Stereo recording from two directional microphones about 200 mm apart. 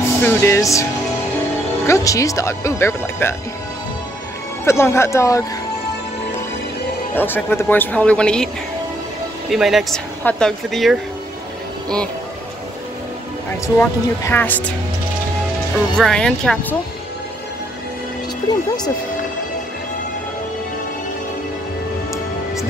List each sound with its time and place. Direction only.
0.0 s speech: 10° left (ahead or behind)
1.9 s speech: 15° left (ahead or behind)
4.6 s speech: 15° left (ahead or behind)
7.2 s speech: 10° left (ahead or behind)
9.5 s speech: centre (ahead or behind)
13.5 s speech: 15° left (ahead or behind)
16.0 s speech: 5° left (ahead or behind)